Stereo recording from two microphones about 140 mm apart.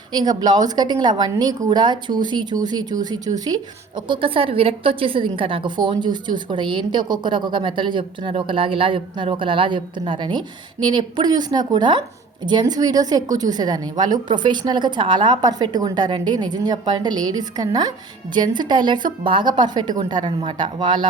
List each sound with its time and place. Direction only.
0.1 s a woman's voice: 30° right (ahead or behind)